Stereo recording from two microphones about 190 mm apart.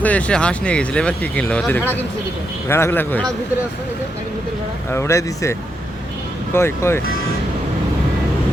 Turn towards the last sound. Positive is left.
turn(degrees=15)  # may be behind; listen again after turning